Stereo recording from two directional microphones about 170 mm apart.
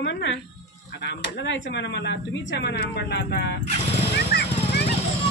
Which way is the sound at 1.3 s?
90° left.